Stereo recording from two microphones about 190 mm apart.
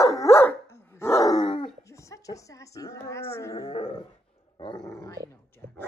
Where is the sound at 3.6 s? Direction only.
30° left (ahead or behind).